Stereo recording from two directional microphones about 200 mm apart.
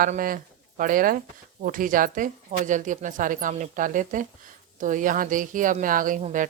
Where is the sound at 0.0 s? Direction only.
45° right (ahead or behind).